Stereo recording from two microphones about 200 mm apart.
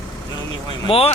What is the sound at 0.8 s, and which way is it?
Speech, 30° left (ahead or behind).